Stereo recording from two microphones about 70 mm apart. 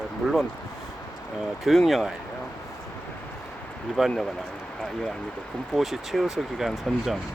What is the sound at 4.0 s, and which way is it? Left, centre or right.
Speech, centre.